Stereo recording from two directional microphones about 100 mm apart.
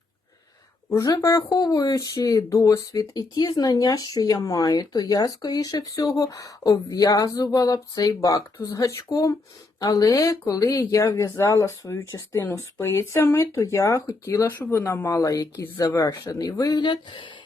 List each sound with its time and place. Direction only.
0.9 s speech: 35° left (ahead or behind)
16.8 s speech: 50° left (ahead or behind)